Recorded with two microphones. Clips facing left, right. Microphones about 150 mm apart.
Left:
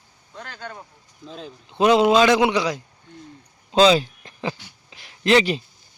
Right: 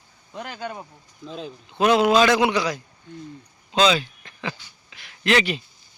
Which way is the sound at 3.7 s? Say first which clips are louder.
Left 4 dB; 35° left (ahead or behind).